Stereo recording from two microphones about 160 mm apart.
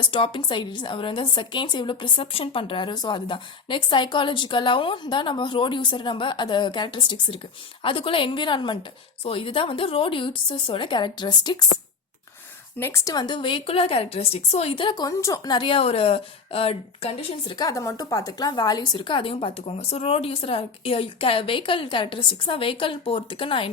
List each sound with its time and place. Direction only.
0.1 s a woman's voice: 30° left (ahead or behind)
12.8 s a woman's voice: 20° left (ahead or behind); by 17.6 s 35° left (ahead or behind)
17.6 s a woman's voice: 20° left (ahead or behind)